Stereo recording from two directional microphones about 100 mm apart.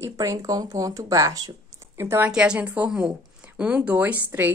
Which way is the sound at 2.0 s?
20° right (ahead or behind).